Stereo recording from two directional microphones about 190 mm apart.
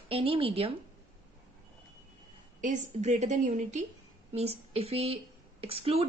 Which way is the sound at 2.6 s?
40° right (ahead or behind).